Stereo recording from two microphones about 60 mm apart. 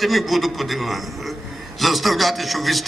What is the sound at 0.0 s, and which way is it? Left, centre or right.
A man's voice, centre.